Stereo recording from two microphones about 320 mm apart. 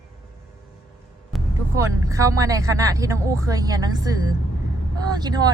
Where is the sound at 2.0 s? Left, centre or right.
Centre.